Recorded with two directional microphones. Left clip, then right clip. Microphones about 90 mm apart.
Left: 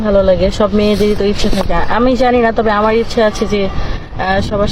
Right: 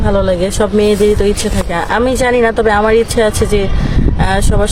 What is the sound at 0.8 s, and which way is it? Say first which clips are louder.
Speech: right 2 dB; 60° right (ahead or behind).